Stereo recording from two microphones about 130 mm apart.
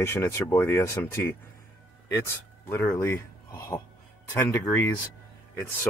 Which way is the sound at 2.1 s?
20° left (ahead or behind).